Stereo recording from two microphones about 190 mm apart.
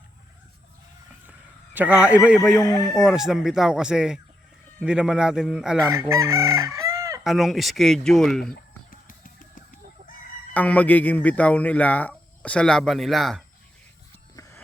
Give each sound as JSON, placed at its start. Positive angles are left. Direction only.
{"t": 1.3, "sound": "a sound", "side_deg": -10}
{"t": 2.0, "sound": "a man's voice", "side_deg": -5}
{"t": 2.6, "sound": "speech", "side_deg": 15}
{"t": 2.9, "sound": "speech", "side_deg": -5}
{"t": 5.8, "sound": "chicken", "side_deg": -15}
{"t": 7.3, "sound": "speech", "side_deg": 0}
{"t": 8.9, "sound": "music", "side_deg": 50}
{"t": 10.5, "sound": "speech", "side_deg": 10}
{"t": 14.3, "sound": "music", "side_deg": 15}